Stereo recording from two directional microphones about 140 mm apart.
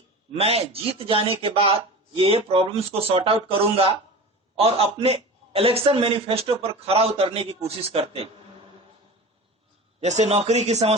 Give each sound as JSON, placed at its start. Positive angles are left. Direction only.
{"t": 0.3, "sound": "a man's voice", "side_deg": -45}
{"t": 4.5, "sound": "a man's voice", "side_deg": -45}
{"t": 10.0, "sound": "a man's voice", "side_deg": -55}